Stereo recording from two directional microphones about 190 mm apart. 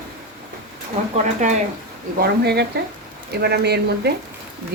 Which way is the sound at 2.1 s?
60° right (ahead or behind).